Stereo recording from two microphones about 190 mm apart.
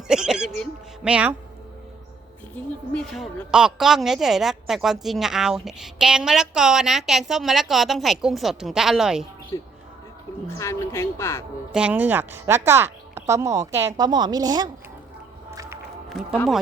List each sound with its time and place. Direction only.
0.1 s music: 5° right (ahead or behind)
2.9 s a woman's voice: 5° left (ahead or behind)
9.5 s a woman's voice: 20° left (ahead or behind)
11.7 s a woman's voice: 5° right (ahead or behind)
15.4 s music: 15° right (ahead or behind)
16.0 s speech: 5° right (ahead or behind)